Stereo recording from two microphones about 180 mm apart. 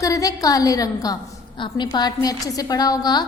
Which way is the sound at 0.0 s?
20° left (ahead or behind).